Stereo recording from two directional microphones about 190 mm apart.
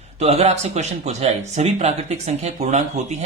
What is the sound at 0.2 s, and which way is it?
Speech, 35° right (ahead or behind).